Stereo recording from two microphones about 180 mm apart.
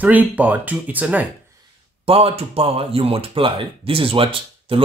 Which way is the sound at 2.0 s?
35° right (ahead or behind).